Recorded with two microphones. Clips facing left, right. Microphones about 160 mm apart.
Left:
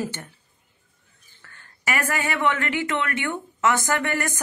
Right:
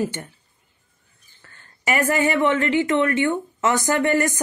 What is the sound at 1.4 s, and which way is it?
A woman's voice, 20° right (ahead or behind).